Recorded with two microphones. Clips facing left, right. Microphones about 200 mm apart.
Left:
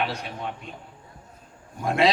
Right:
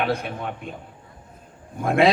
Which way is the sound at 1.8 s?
55° right (ahead or behind).